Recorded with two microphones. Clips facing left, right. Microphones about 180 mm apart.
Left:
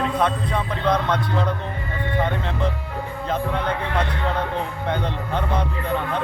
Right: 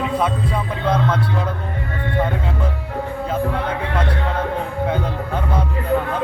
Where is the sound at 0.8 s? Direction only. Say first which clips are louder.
Right 1 dB; 5° right (ahead or behind).